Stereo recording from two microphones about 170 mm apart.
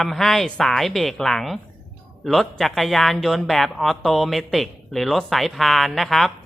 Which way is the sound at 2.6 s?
Centre (ahead or behind).